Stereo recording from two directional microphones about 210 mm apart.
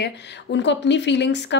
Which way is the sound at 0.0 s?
55° left (ahead or behind).